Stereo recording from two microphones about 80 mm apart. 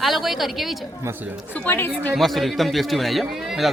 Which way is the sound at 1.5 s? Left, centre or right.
Left.